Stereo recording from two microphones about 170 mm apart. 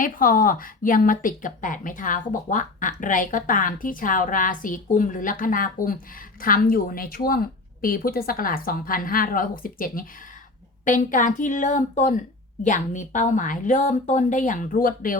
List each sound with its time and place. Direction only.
0.0 s a woman's voice: 55° left (ahead or behind)